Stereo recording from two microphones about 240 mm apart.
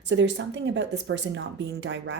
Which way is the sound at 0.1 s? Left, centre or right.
Right.